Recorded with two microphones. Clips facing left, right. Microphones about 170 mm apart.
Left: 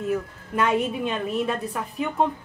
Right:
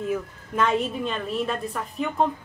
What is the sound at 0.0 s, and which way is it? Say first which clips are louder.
A woman's voice: left 1 dB; 5° left (ahead or behind).